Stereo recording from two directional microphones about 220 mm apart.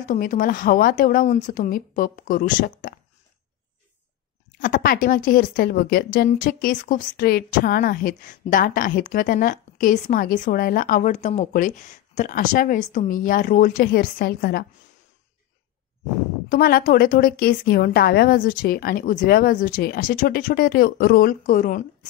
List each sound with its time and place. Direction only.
0.0 s a woman's voice: 35° left (ahead or behind)
4.6 s a woman's voice: 40° left (ahead or behind)
16.4 s a woman's voice: 40° left (ahead or behind)